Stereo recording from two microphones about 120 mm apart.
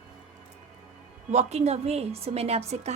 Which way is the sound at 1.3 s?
70° right (ahead or behind).